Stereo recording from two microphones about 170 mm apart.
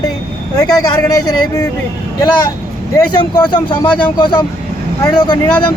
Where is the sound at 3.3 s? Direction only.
25° left (ahead or behind).